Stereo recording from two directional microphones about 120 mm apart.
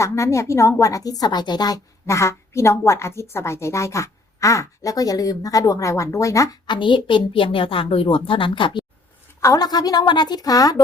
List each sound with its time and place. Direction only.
0.0 s a woman's voice: 25° left (ahead or behind)
6.7 s a woman's voice: 40° left (ahead or behind)
9.4 s a woman's voice: 30° left (ahead or behind)